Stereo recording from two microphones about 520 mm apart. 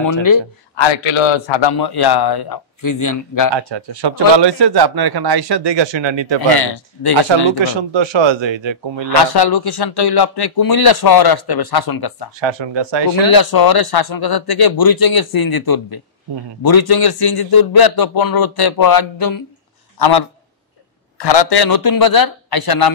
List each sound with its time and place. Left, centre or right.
0.0 s a man's voice: left
0.8 s a man's voice: left
3.5 s speech: right
6.5 s a man's voice: left
7.2 s speech: right
9.1 s a man's voice: left
12.4 s speech: right
13.2 s a man's voice: left